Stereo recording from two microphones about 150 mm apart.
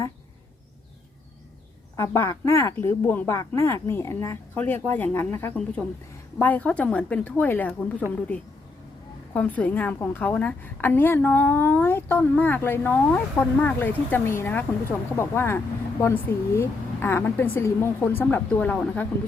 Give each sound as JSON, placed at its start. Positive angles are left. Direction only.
{"t": 2.0, "sound": "a woman's voice", "side_deg": 20}
{"t": 9.3, "sound": "a woman's voice", "side_deg": 10}